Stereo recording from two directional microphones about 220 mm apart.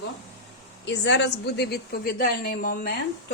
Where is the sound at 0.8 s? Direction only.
55° left (ahead or behind).